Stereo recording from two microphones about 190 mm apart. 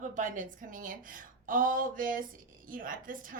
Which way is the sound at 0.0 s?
40° right (ahead or behind).